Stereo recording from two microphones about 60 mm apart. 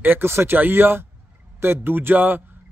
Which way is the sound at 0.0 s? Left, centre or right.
Right.